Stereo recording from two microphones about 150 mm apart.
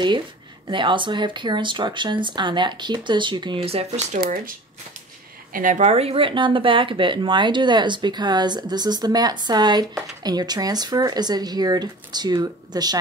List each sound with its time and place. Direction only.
0.7 s speech: 30° right (ahead or behind)
4.2 s speech: 70° right (ahead or behind)
5.5 s speech: 60° right (ahead or behind); by 13.0 s 25° right (ahead or behind)